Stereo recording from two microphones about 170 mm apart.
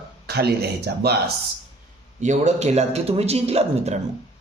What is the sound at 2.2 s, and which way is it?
A man's voice, 45° right (ahead or behind).